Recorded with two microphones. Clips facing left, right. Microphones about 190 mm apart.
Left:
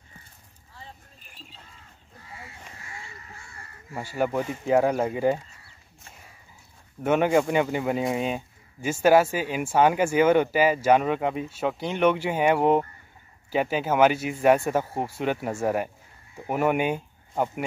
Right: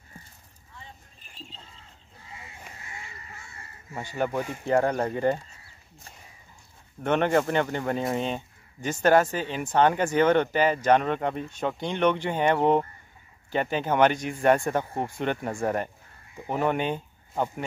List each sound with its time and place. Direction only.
2.3 s a sound: 20° right (ahead or behind)
3.9 s speech: 5° left (ahead or behind)
7.0 s speech: 5° left (ahead or behind)